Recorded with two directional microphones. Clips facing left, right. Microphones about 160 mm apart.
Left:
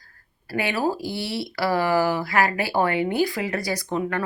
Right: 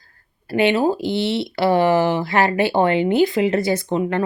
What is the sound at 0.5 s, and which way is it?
Speech, 25° right (ahead or behind).